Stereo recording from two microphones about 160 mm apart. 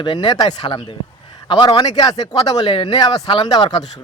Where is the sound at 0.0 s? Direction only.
30° left (ahead or behind).